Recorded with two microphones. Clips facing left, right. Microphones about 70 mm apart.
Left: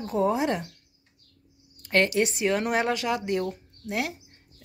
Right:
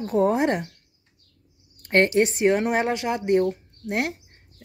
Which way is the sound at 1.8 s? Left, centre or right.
Right.